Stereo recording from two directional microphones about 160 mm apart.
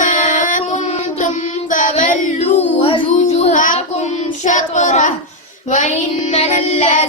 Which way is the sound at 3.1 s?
50° left (ahead or behind).